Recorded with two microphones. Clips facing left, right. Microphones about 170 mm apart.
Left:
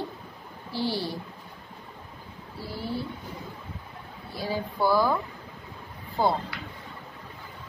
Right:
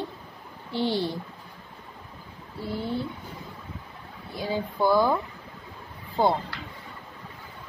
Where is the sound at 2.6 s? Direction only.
20° right (ahead or behind).